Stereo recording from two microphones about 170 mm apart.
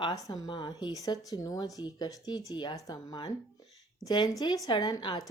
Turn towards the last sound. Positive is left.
turn(degrees=25)  # may be behind; listen again after turning